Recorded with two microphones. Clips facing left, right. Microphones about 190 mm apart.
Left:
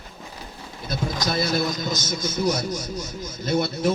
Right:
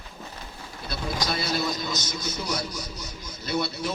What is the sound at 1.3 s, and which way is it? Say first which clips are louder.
A man's voice: left 4 dB; 45° left (ahead or behind).